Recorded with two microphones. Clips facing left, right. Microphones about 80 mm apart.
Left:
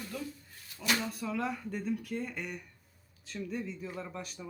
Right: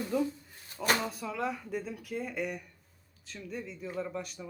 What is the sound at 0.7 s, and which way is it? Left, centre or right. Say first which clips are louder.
Speech: right 3 dB; right.